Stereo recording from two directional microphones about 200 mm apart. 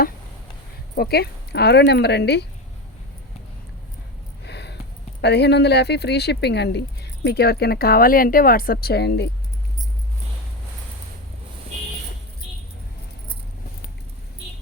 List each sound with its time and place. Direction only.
0.9 s speech: 50° left (ahead or behind)
4.4 s a sound: 55° left (ahead or behind)
5.2 s speech: 55° left (ahead or behind)